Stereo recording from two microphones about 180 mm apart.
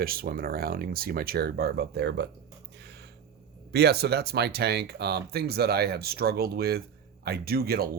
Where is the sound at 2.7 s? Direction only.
70° right (ahead or behind).